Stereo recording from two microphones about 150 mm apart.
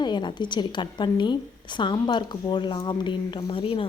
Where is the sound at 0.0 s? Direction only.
30° left (ahead or behind).